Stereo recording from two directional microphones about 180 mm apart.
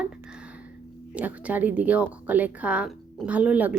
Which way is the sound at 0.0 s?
5° right (ahead or behind).